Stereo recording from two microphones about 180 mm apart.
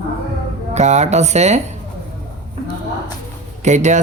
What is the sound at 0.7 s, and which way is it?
Speech, 40° right (ahead or behind).